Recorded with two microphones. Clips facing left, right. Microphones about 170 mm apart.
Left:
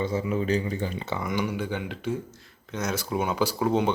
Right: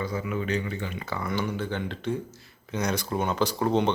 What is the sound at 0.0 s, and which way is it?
Speech, 30° left (ahead or behind).